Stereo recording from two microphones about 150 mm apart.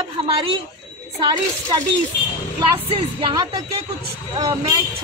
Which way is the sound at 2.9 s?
30° right (ahead or behind).